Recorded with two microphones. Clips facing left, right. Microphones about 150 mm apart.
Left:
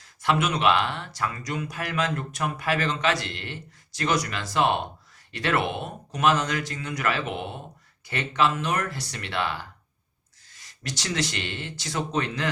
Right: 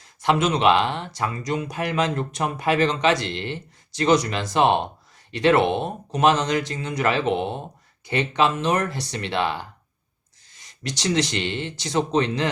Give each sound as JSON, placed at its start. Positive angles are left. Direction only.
{"t": 0.2, "sound": "speech", "side_deg": -20}